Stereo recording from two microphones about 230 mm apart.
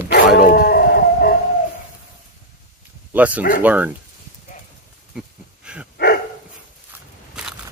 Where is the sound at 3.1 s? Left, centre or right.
Centre.